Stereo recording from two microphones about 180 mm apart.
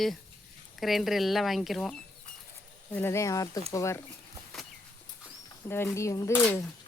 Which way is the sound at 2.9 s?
15° left (ahead or behind).